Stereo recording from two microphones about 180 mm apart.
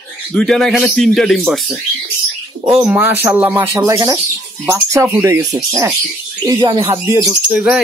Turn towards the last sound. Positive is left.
turn(degrees=-5)  # may be behind; listen again after turning